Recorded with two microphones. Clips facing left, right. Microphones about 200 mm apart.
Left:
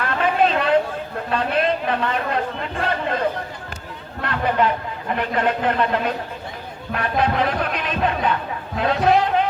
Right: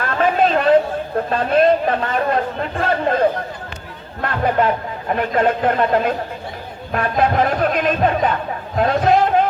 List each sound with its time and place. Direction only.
0.0 s chatter: 45° right (ahead or behind)
1.3 s speech: 45° right (ahead or behind)